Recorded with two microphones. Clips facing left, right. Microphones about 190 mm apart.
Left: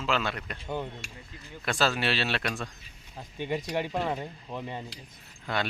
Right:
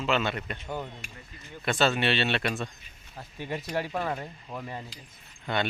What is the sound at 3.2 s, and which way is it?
Speech, 15° left (ahead or behind).